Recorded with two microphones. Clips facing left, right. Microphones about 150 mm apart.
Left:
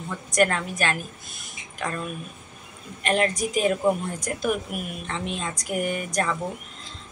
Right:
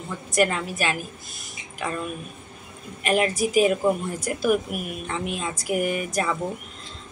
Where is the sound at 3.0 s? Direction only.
5° right (ahead or behind).